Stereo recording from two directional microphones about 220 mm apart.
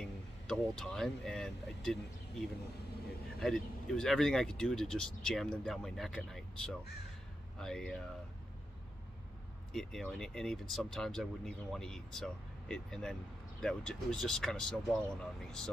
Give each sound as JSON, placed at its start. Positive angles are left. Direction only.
{"t": 0.0, "sound": "speech", "side_deg": 5}
{"t": 3.3, "sound": "speech", "side_deg": 0}
{"t": 9.7, "sound": "speech", "side_deg": 0}